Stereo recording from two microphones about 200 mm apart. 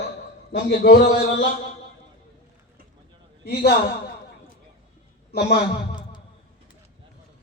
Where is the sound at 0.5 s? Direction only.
60° left (ahead or behind).